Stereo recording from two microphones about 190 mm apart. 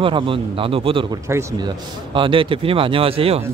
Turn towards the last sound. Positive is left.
turn(degrees=-30)  # may be behind; listen again after turning